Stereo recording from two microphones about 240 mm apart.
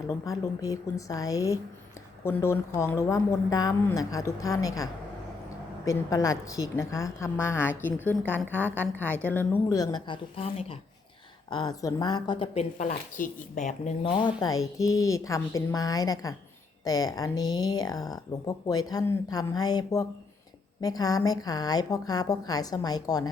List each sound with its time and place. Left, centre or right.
0.3 s speech: centre
5.9 s speech: centre
8.4 s a woman's voice: centre
8.7 s speech: centre